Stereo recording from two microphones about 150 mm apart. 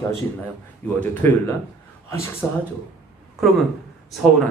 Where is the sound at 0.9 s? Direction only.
10° left (ahead or behind).